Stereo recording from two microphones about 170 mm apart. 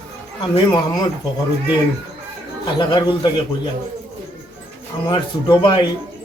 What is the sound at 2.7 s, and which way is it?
Speech, 25° left (ahead or behind).